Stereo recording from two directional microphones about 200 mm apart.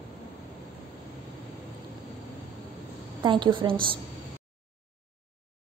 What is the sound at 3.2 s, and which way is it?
Speech, 25° right (ahead or behind).